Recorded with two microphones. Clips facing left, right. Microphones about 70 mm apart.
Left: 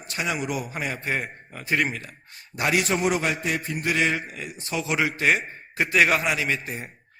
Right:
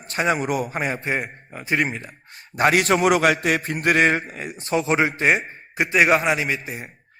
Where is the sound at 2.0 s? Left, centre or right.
Right.